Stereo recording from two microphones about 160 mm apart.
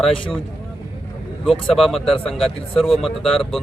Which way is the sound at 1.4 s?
Centre (ahead or behind).